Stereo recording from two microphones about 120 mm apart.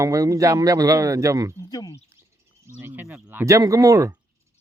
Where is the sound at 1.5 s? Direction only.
30° left (ahead or behind).